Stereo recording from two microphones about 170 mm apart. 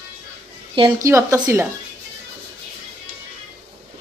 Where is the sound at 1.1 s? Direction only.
20° right (ahead or behind).